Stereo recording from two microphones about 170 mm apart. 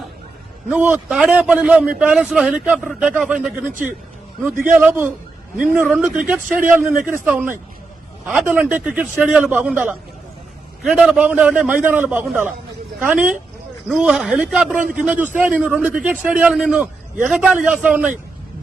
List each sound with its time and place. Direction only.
0.7 s a man's voice: 10° right (ahead or behind)
3.7 s speech: 50° right (ahead or behind)
4.6 s a man's voice: 10° right (ahead or behind)